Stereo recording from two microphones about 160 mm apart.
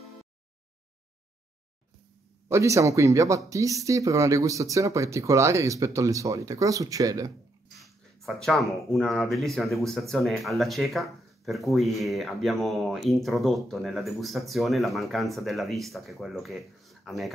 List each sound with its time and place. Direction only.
2.4 s speech: 20° right (ahead or behind)
7.8 s speech: centre (ahead or behind)